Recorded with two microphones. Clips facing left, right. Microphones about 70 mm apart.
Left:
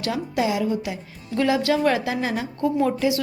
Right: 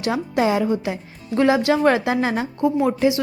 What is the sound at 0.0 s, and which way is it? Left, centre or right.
A woman's voice, right.